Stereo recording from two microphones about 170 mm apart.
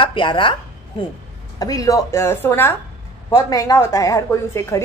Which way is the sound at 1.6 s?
20° left (ahead or behind).